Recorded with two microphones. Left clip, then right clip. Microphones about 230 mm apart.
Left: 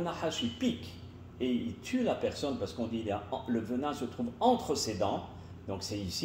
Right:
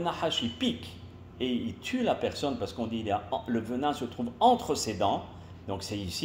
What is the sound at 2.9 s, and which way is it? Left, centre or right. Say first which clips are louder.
Speech: right 5 dB; right.